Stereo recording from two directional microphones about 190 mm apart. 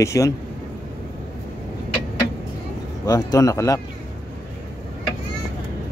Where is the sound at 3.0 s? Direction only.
20° left (ahead or behind).